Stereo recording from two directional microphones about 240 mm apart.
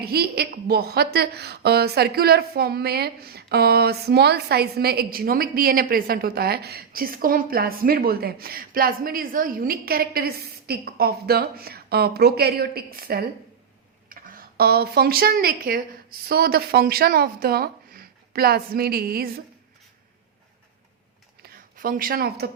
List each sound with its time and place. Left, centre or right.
0.0 s a woman's voice: right
21.4 s speech: right